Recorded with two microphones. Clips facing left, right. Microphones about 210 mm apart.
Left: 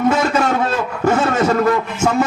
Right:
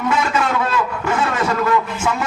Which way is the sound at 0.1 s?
45° left (ahead or behind).